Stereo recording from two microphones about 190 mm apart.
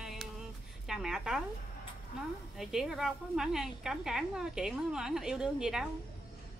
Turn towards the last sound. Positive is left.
turn(degrees=-5)  # may be behind; listen again after turning